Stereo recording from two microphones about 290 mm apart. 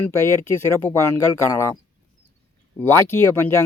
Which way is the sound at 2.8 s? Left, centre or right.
Centre.